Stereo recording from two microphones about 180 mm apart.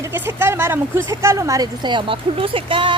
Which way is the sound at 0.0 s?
10° right (ahead or behind).